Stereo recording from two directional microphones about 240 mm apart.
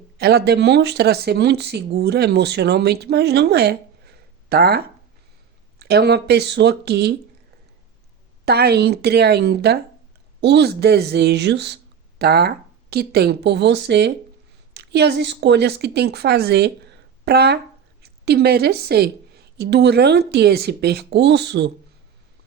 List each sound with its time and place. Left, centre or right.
0.2 s speech: right
5.8 s speech: right
8.4 s speech: right